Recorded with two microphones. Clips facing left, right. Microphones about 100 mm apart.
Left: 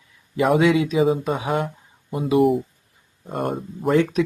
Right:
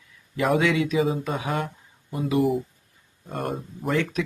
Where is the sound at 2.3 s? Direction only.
Centre (ahead or behind).